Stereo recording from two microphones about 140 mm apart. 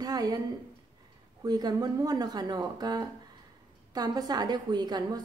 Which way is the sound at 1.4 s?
30° right (ahead or behind).